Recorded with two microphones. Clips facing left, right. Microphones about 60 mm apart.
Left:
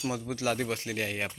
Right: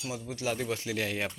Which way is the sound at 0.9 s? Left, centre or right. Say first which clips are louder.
Right 1 dB; left.